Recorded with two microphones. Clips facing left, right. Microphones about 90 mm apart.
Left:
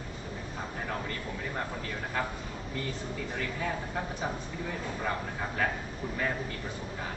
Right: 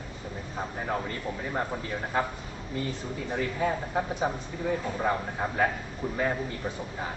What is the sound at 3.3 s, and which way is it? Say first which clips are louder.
A man's voice: right 7 dB; 20° right (ahead or behind).